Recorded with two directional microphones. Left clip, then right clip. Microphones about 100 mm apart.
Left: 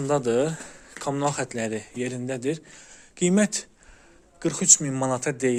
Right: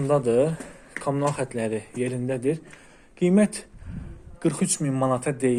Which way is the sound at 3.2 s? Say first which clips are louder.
Right 1 dB; 70° left (ahead or behind).